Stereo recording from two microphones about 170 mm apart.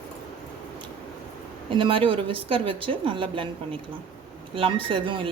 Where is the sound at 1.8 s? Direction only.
30° right (ahead or behind).